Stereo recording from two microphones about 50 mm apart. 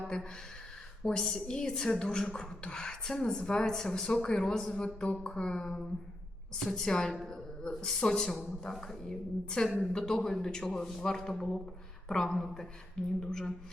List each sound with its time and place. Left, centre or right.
1.0 s a woman's voice: centre